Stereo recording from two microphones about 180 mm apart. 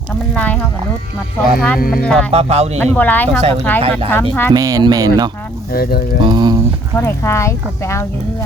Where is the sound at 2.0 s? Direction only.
5° left (ahead or behind).